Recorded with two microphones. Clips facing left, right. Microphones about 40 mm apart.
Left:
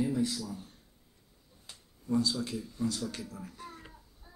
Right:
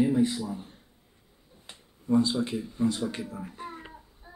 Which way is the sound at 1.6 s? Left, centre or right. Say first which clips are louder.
Right 6 dB; right.